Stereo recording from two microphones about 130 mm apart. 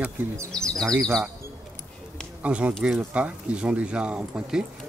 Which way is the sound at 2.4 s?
10° right (ahead or behind).